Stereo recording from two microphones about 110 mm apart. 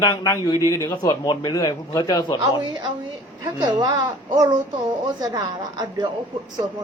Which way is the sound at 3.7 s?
40° right (ahead or behind).